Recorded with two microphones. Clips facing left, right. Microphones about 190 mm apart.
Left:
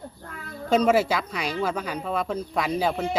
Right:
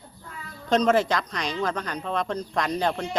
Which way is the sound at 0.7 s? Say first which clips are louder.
Left 1 dB; 10° left (ahead or behind).